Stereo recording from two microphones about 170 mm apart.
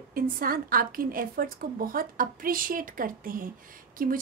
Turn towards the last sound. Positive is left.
turn(degrees=-55)  # may be behind; listen again after turning